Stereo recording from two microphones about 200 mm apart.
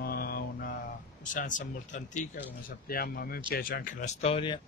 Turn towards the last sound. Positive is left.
turn(degrees=25)  # may be behind; listen again after turning